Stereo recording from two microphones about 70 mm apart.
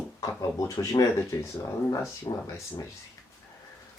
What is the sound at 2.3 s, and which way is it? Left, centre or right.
Speech, left.